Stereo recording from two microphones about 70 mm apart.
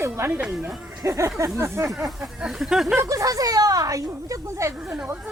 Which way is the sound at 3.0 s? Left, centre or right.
Right.